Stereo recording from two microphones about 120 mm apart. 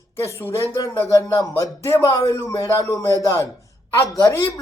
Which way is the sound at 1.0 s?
30° left (ahead or behind).